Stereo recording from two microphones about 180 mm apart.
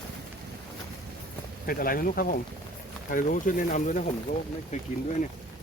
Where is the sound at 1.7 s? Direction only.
55° left (ahead or behind).